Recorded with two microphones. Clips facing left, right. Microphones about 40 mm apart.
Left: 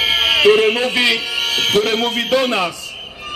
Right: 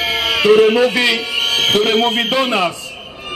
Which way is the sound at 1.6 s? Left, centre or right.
Right.